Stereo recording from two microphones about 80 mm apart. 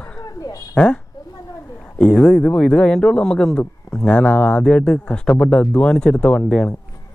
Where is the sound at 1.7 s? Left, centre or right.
Centre.